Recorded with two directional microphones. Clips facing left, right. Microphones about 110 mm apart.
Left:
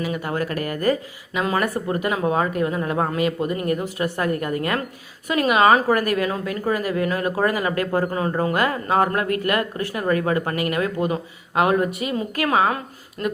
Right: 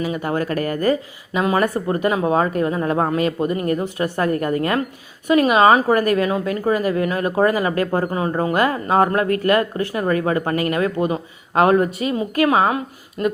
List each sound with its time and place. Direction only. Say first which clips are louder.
0.0 s a woman's voice: right 3 dB; 30° right (ahead or behind)
12.7 s a woman's voice: right 5 dB; 20° right (ahead or behind)